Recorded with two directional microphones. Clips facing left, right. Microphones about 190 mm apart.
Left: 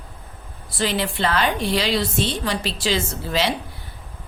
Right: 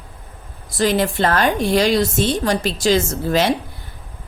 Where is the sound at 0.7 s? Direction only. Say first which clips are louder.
Right 6 dB; 45° right (ahead or behind).